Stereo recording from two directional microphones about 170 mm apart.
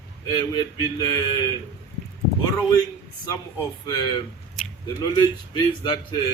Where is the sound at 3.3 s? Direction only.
25° left (ahead or behind).